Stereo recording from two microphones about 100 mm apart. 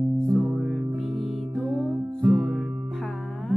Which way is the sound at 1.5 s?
15° right (ahead or behind).